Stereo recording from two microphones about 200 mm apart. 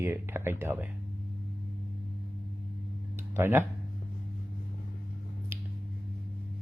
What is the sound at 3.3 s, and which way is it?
Speech, 10° right (ahead or behind).